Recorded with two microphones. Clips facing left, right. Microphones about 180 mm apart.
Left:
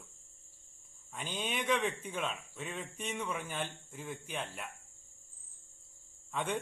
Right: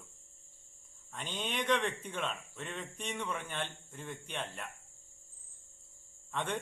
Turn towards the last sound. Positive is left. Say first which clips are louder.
# left 1 dB
turn(degrees=5)  # may be behind; listen again after turning